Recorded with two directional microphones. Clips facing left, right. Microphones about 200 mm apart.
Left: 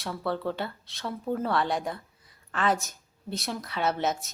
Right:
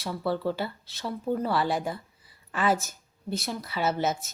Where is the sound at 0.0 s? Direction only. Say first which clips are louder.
Right 2 dB; centre (ahead or behind).